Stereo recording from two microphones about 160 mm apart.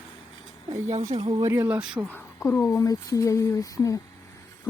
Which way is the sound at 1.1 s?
40° right (ahead or behind).